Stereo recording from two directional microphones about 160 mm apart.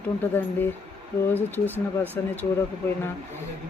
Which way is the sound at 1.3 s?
15° left (ahead or behind).